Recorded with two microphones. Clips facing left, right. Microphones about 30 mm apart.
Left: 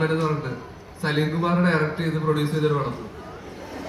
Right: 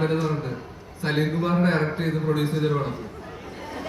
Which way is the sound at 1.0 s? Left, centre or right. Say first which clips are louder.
Left 1 dB; left.